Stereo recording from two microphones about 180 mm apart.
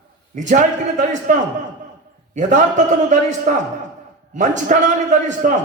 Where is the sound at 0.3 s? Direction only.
45° right (ahead or behind).